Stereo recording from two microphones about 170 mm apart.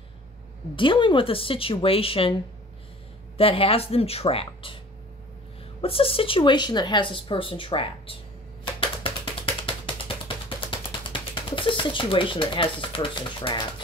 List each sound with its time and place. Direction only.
0.7 s speech: 30° left (ahead or behind)
3.3 s speech: 35° left (ahead or behind)
5.8 s speech: 35° left (ahead or behind)
8.7 s a sound: 30° left (ahead or behind)